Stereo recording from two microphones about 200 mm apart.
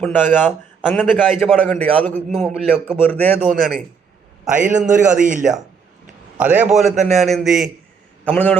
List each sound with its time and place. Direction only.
0.0 s a man's voice: 10° left (ahead or behind)
3.0 s a man's voice: 10° left (ahead or behind)
4.4 s a man's voice: 40° right (ahead or behind)
6.4 s a man's voice: 5° right (ahead or behind); by 8.5 s 10° left (ahead or behind)